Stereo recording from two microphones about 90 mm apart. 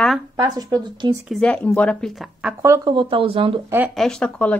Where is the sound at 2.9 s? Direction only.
70° right (ahead or behind).